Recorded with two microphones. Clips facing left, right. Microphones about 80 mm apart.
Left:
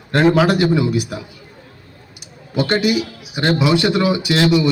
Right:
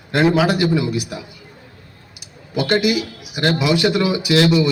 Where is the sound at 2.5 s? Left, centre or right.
Left.